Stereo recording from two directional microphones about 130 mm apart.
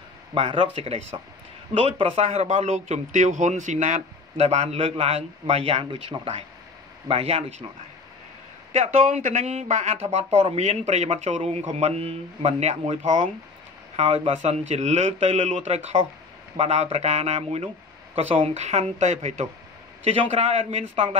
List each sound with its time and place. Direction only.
0.3 s speech: 40° right (ahead or behind)
8.7 s speech: 60° right (ahead or behind)
13.9 s speech: 50° right (ahead or behind)